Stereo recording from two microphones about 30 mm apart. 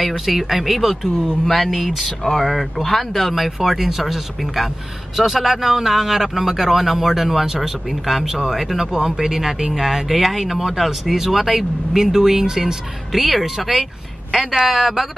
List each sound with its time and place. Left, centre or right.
0.0 s speech: centre
1.4 s speech: centre
3.4 s speech: centre
13.1 s speech: centre